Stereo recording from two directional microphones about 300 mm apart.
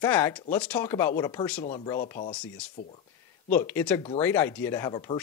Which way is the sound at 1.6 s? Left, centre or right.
Left.